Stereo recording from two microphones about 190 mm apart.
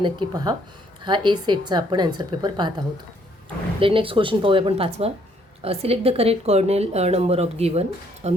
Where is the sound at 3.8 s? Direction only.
30° right (ahead or behind).